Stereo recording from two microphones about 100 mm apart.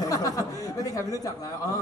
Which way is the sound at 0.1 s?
35° left (ahead or behind).